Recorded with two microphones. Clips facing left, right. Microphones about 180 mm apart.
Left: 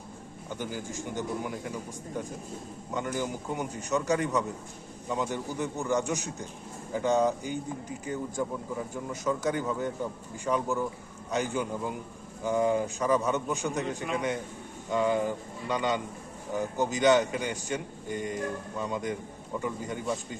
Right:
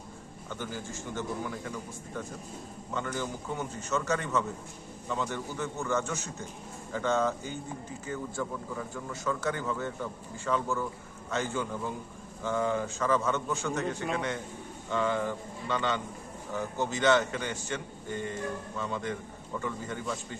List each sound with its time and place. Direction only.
0.5 s a man's voice: 15° left (ahead or behind)